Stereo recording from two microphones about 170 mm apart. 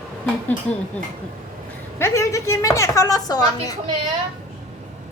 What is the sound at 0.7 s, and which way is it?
Speech, 5° left (ahead or behind).